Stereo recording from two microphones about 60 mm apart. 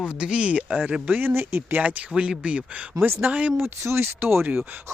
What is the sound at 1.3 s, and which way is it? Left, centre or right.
Speech, right.